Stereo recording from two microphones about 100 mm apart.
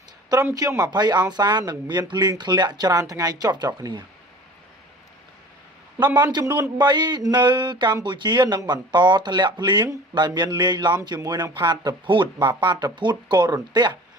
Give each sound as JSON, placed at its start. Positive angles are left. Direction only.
{"t": 0.5, "sound": "a man's voice", "side_deg": -35}
{"t": 6.3, "sound": "a man's voice", "side_deg": -45}